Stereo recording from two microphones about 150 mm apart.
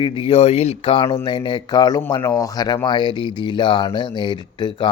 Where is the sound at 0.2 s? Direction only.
40° left (ahead or behind).